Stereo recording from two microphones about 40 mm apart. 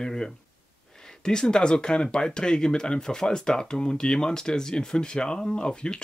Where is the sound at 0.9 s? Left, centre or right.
Centre.